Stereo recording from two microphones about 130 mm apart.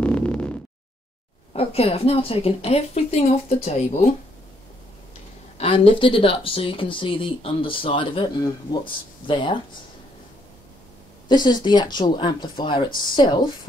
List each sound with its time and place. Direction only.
0.0 s a sound: 10° left (ahead or behind)
1.5 s speech: 50° left (ahead or behind)
5.6 s speech: 45° left (ahead or behind)
11.2 s speech: 35° left (ahead or behind)